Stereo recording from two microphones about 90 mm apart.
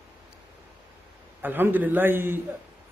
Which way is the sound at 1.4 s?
20° right (ahead or behind).